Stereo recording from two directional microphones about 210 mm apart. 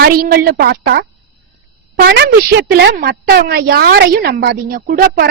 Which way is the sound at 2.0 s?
55° right (ahead or behind).